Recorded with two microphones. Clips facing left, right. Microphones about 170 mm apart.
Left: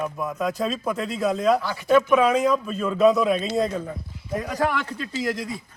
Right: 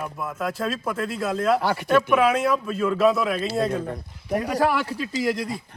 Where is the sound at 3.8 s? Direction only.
70° right (ahead or behind).